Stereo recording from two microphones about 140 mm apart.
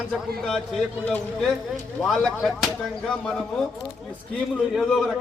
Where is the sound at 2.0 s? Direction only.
Centre (ahead or behind).